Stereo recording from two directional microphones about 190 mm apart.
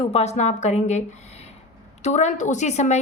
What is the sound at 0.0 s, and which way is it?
A woman's voice, 35° left (ahead or behind).